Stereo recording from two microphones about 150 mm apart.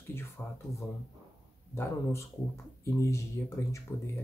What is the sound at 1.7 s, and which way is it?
Speech, 20° left (ahead or behind).